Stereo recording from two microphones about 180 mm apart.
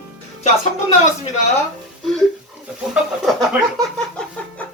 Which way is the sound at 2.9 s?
5° right (ahead or behind).